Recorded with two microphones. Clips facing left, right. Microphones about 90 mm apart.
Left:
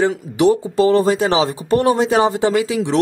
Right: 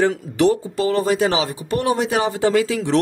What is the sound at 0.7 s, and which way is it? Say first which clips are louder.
Speech: left 5 dB; 30° left (ahead or behind).